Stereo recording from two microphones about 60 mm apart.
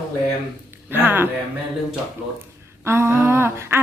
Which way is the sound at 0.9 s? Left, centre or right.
Right.